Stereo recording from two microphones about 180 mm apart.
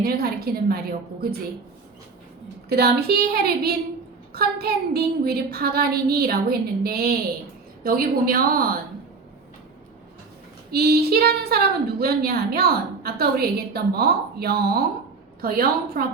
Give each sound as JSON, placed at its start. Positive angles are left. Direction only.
{"t": 0.0, "sound": "a woman's voice", "side_deg": -55}
{"t": 2.6, "sound": "a woman's voice", "side_deg": -60}
{"t": 10.7, "sound": "a woman's voice", "side_deg": -60}